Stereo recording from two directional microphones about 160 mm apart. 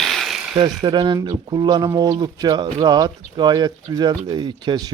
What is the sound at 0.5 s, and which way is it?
Speech, 30° right (ahead or behind).